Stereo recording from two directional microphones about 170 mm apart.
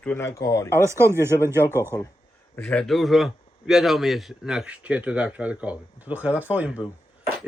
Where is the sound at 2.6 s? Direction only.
10° left (ahead or behind).